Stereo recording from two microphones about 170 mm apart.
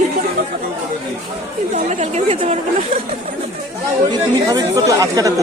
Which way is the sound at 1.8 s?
45° right (ahead or behind).